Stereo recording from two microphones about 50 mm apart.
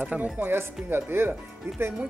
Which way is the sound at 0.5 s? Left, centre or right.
Right.